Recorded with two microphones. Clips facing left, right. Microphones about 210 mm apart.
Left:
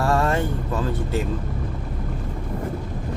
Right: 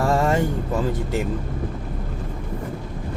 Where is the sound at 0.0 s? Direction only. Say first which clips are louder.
Right 1 dB; 15° right (ahead or behind).